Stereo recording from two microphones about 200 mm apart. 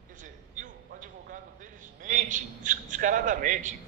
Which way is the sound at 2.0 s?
40° right (ahead or behind).